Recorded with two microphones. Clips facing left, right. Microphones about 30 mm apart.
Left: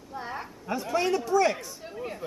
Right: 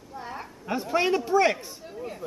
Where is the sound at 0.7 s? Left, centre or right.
Right.